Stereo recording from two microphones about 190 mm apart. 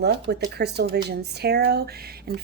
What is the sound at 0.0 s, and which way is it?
Speech, 60° right (ahead or behind).